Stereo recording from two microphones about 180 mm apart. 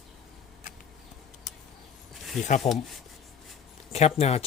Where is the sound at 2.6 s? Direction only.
35° left (ahead or behind).